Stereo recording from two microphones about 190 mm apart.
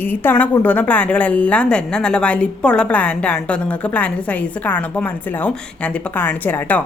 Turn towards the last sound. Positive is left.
turn(degrees=10)  # may be behind; listen again after turning